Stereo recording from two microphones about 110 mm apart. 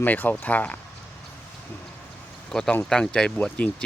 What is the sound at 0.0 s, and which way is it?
Speech, 15° left (ahead or behind).